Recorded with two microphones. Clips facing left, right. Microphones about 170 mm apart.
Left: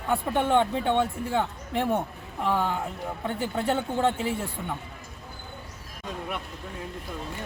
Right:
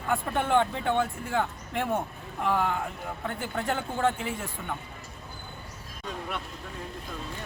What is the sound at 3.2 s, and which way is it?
Speech, 25° left (ahead or behind).